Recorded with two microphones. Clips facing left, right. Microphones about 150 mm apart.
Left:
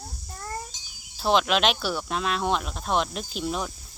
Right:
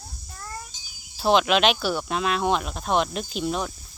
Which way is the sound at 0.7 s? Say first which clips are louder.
Even; 90° left.